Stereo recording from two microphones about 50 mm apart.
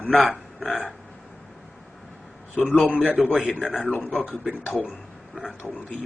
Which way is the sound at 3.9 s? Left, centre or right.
Left.